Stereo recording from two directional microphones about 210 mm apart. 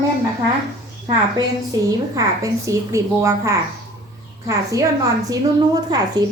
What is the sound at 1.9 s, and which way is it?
A woman's voice, 15° right (ahead or behind).